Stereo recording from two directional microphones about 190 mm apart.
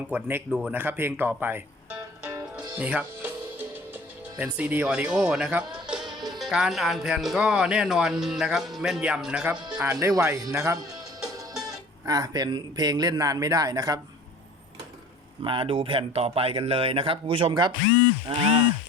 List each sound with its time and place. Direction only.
0.1 s music: 10° right (ahead or behind)
6.4 s speech: centre (ahead or behind)
12.0 s speech: 20° right (ahead or behind)
15.4 s speech: 30° right (ahead or behind)